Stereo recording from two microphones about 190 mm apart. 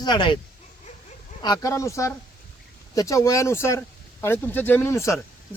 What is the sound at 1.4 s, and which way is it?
Speech, 20° left (ahead or behind).